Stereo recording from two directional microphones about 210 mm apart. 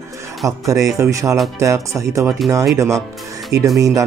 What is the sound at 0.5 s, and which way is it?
Speech, 15° right (ahead or behind).